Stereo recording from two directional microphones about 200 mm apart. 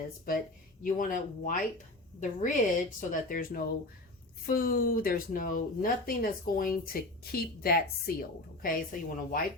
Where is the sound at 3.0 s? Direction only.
40° left (ahead or behind).